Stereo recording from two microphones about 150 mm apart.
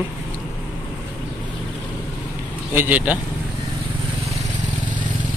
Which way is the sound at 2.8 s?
10° right (ahead or behind).